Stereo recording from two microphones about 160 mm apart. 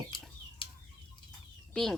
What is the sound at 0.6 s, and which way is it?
Chicken, 30° left (ahead or behind).